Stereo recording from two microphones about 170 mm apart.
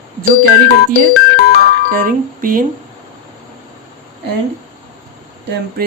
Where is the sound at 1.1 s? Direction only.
75° left (ahead or behind).